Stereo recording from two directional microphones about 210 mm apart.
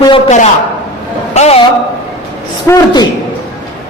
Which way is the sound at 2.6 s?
15° left (ahead or behind).